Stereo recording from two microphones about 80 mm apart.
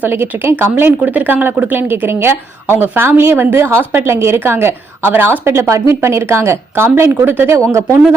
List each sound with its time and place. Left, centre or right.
0.0 s a woman's voice: right